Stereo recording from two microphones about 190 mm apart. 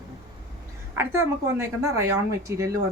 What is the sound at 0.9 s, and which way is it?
A woman's voice, 15° right (ahead or behind).